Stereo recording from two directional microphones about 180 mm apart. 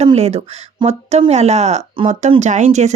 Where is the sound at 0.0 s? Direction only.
35° right (ahead or behind).